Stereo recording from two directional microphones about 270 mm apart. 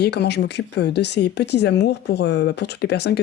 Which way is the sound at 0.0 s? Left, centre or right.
Left.